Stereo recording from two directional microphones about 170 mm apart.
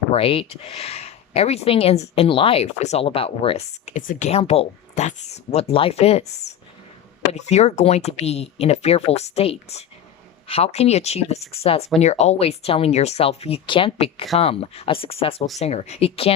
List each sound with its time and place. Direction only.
0.1 s speech: 35° left (ahead or behind)
7.3 s speech: 40° left (ahead or behind)